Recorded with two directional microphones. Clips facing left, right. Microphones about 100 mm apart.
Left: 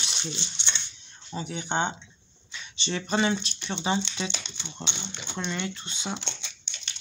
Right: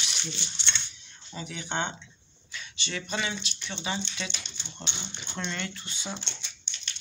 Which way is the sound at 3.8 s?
25° left (ahead or behind).